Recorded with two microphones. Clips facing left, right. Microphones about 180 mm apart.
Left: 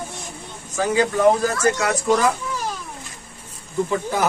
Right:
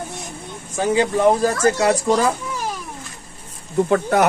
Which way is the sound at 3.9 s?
70° right (ahead or behind).